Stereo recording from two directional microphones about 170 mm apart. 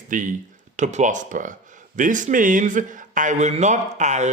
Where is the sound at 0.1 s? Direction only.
50° right (ahead or behind).